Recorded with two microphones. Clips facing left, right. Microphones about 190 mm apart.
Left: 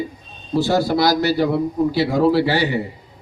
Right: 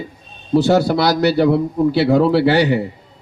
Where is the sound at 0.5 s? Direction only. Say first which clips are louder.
Right 4 dB; 65° right (ahead or behind).